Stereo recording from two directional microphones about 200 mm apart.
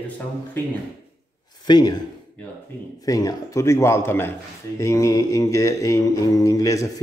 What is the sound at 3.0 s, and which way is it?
Speech, 15° left (ahead or behind).